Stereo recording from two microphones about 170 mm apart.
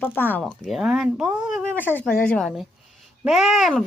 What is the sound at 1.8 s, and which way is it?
Speech, 10° left (ahead or behind).